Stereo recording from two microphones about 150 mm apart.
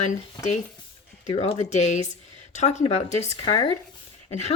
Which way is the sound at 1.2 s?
40° left (ahead or behind).